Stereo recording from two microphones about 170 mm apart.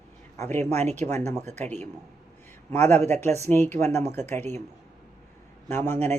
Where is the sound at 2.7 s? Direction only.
15° left (ahead or behind).